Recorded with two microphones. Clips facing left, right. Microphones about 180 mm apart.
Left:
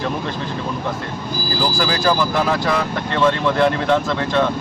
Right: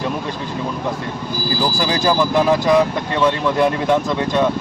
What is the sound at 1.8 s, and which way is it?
Speech, 20° right (ahead or behind).